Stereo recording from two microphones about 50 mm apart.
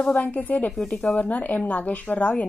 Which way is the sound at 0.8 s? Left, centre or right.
Centre.